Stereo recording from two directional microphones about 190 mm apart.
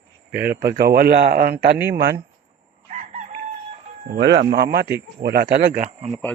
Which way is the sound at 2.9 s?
35° right (ahead or behind).